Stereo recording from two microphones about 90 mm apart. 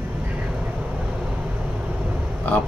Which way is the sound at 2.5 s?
10° left (ahead or behind).